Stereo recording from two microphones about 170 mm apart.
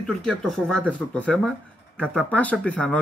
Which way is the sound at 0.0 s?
5° left (ahead or behind).